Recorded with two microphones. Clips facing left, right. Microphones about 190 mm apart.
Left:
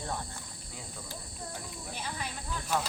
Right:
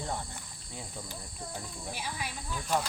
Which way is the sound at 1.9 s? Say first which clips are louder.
Left 1 dB; 10° right (ahead or behind).